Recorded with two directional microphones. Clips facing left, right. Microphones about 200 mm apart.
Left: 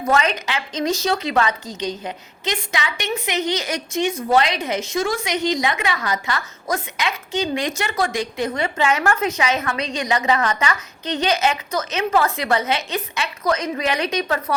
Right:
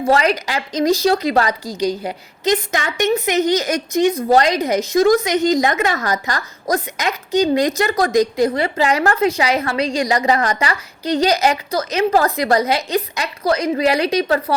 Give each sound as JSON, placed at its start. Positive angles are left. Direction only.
{"t": 0.0, "sound": "a woman's voice", "side_deg": -35}